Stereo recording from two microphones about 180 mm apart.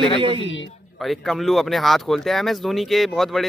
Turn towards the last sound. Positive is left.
turn(degrees=0)  # may be behind; listen again after turning